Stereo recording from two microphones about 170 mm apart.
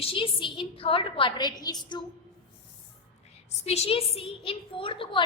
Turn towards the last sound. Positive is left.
turn(degrees=30)  # may be behind; listen again after turning